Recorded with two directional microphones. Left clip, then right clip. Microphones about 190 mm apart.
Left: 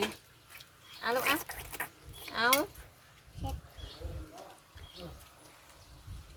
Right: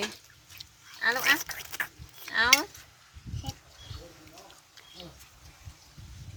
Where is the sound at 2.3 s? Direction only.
10° right (ahead or behind).